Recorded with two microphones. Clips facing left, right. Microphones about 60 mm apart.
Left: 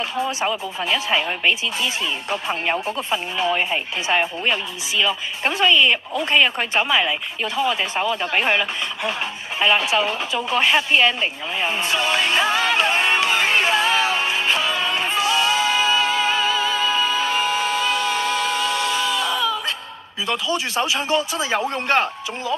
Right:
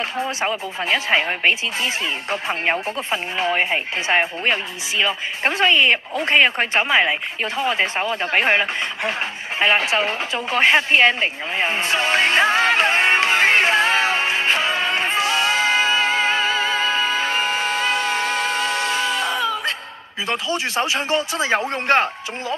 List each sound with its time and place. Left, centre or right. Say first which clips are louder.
0.0 s speech: even; right
9.6 s a sound: even; right
20.2 s speech: even; right